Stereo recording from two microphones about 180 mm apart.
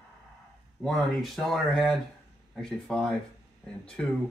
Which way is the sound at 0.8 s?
Centre (ahead or behind).